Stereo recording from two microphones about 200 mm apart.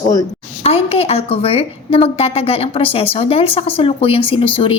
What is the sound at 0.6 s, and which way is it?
A woman's voice, 30° left (ahead or behind).